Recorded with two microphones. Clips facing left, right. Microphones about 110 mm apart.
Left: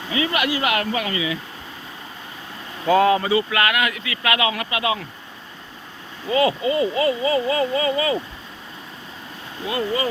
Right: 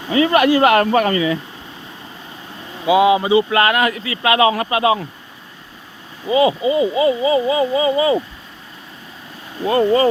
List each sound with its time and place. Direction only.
0.1 s speech: 40° right (ahead or behind)
2.8 s speech: 10° right (ahead or behind)
3.5 s speech: 30° right (ahead or behind)
6.2 s speech: 15° right (ahead or behind)
9.6 s speech: 40° right (ahead or behind)